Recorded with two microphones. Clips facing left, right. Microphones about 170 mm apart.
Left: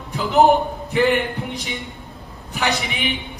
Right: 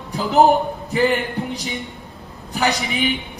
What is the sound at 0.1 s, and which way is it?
A man's voice, 35° right (ahead or behind).